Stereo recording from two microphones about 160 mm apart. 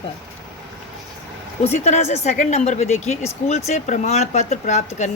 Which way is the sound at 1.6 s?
40° left (ahead or behind).